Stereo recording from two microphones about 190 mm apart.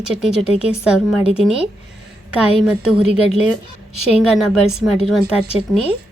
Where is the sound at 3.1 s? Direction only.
35° left (ahead or behind).